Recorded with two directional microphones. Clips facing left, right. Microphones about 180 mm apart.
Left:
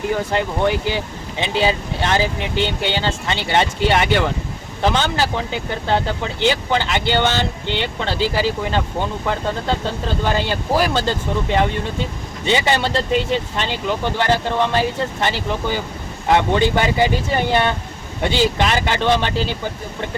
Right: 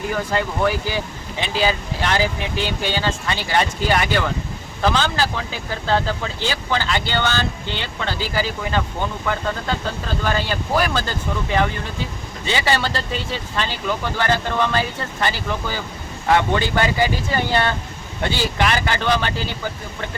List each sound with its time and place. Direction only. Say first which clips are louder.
0.1 s speech: left 1 dB; 25° left (ahead or behind)
12.5 s speech: left 3 dB; 20° left (ahead or behind)